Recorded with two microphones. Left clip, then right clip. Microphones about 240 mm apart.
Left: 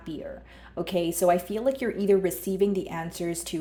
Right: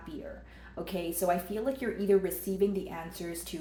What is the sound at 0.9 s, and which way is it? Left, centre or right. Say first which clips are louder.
Speech: left 7 dB; left.